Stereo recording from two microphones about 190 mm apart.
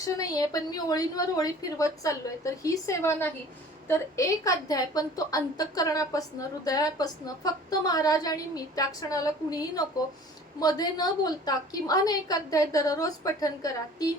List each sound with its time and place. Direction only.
0.0 s a woman's voice: 20° left (ahead or behind)